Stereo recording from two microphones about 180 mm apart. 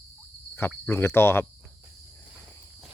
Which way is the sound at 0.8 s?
15° left (ahead or behind).